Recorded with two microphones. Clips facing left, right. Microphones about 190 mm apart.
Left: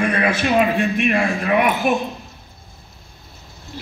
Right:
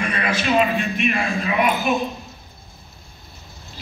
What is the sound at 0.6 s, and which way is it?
A man's voice, 60° left (ahead or behind).